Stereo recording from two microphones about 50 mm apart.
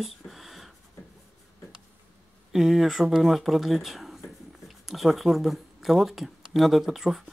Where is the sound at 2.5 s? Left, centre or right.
Centre.